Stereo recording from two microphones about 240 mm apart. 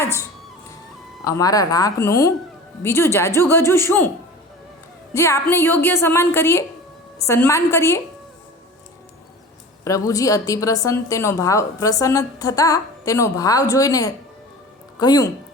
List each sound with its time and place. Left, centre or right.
0.0 s a woman's voice: centre
5.1 s a woman's voice: centre
10.1 s a woman's voice: centre